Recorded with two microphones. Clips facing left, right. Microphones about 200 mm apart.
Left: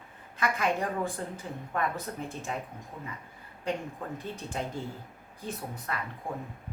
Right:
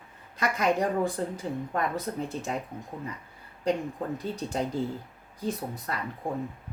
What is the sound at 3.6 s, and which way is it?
Speech, 35° right (ahead or behind).